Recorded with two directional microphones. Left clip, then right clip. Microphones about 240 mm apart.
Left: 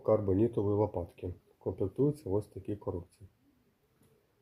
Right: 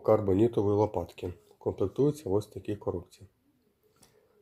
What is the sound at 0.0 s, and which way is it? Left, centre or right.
Speech, centre.